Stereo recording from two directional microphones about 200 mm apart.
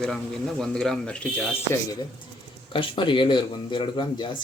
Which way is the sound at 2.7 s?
25° left (ahead or behind).